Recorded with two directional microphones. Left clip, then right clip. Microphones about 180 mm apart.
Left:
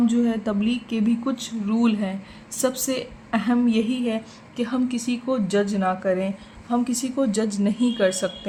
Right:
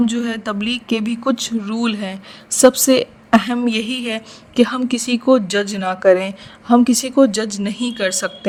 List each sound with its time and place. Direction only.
0.0 s a man's voice: 60° right (ahead or behind)